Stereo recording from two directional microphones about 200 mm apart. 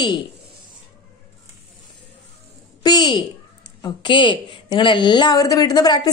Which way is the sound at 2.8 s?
20° left (ahead or behind).